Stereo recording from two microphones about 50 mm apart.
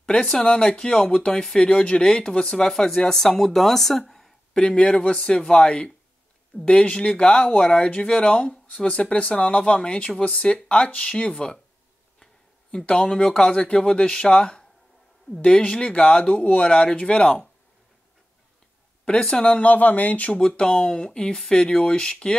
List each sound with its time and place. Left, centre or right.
0.0 s speech: centre
4.6 s speech: left
12.7 s speech: centre
19.0 s speech: centre
19.6 s speech: left; by 22.3 s centre